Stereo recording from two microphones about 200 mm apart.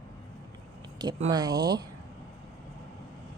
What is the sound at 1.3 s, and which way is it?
Speech, 20° right (ahead or behind).